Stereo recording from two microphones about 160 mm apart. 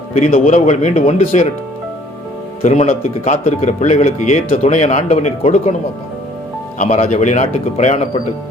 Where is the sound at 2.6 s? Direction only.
45° left (ahead or behind).